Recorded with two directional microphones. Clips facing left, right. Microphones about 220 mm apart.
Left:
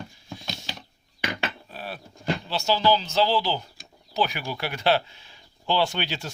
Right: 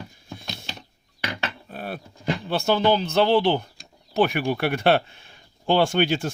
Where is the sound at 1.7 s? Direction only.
55° right (ahead or behind).